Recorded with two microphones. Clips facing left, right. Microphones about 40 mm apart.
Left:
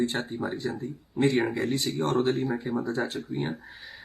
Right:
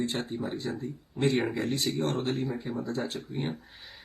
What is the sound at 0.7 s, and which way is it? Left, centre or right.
Speech, left.